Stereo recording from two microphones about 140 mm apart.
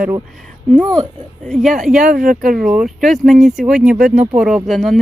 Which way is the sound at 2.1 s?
90° right.